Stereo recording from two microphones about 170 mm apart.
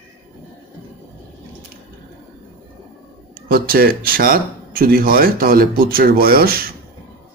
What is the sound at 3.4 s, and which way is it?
Speech, 60° right (ahead or behind).